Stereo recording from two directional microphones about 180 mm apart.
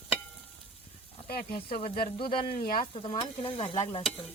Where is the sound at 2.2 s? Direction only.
30° left (ahead or behind).